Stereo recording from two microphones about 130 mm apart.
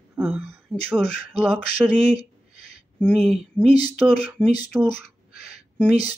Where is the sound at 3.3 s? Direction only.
Centre (ahead or behind).